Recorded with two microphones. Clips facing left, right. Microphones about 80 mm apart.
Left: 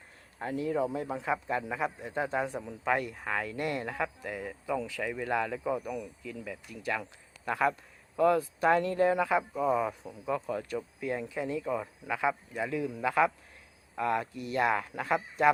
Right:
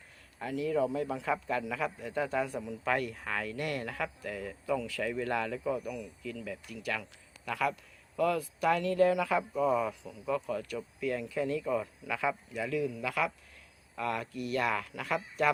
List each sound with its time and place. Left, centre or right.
0.3 s speech: left
7.0 s speech: left